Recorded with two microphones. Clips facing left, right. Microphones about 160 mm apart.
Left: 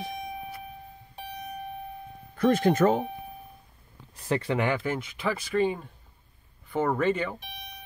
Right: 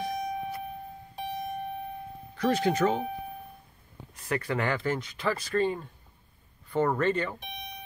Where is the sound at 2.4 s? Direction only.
50° left (ahead or behind).